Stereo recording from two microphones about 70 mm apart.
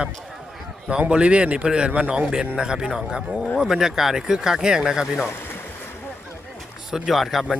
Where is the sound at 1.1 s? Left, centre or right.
Centre.